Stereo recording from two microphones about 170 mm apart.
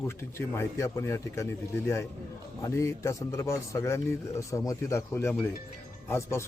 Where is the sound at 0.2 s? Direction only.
15° left (ahead or behind).